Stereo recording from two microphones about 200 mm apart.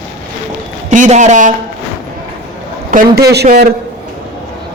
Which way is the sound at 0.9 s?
40° right (ahead or behind).